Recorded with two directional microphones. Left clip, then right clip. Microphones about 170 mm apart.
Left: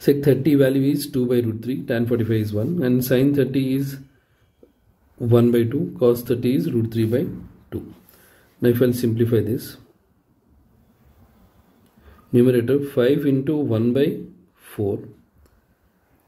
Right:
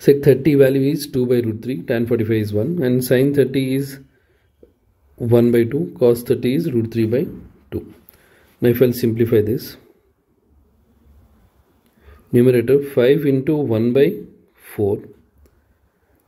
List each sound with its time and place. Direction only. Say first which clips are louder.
0.0 s speech: right 5 dB; 30° right (ahead or behind)
5.2 s speech: right 3 dB; 30° right (ahead or behind)
8.5 s speech: right 3 dB; 35° right (ahead or behind)
12.3 s speech: right 4 dB; 35° right (ahead or behind)
14.6 s writing: right 5 dB; 35° right (ahead or behind)